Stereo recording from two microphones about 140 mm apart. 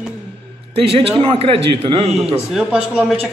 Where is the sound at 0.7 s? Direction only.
40° right (ahead or behind).